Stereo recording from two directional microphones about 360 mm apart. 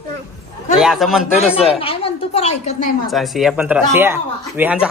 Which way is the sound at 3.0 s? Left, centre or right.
Centre.